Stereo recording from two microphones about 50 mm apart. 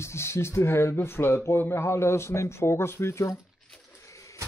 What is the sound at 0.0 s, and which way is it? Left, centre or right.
A man's voice, left.